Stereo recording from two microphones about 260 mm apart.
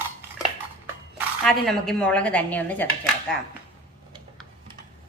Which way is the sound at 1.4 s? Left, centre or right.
Centre.